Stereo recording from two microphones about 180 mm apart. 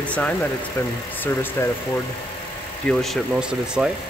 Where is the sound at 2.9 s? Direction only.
Centre (ahead or behind).